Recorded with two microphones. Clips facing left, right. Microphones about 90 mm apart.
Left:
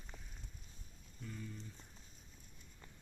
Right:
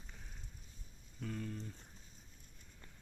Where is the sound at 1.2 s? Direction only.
70° right (ahead or behind).